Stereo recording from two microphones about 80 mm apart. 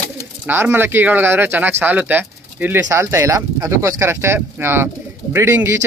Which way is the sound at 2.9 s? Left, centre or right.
Right.